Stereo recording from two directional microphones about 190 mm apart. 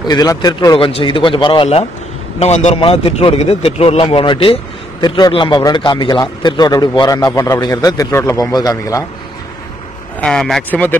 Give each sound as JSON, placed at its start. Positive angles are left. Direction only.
{"t": 0.1, "sound": "a man's voice", "side_deg": 20}
{"t": 10.2, "sound": "speech", "side_deg": 0}